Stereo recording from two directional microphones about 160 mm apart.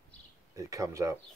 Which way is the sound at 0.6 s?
20° right (ahead or behind).